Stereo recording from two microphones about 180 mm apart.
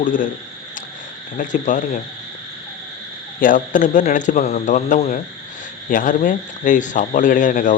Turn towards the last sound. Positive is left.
turn(degrees=45)  # may be behind; listen again after turning